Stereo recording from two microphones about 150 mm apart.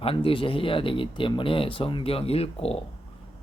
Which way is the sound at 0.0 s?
40° left (ahead or behind).